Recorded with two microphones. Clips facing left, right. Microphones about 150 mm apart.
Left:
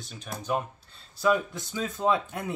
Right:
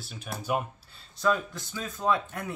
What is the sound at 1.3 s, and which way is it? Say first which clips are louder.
Speech: left 3 dB; 20° left (ahead or behind).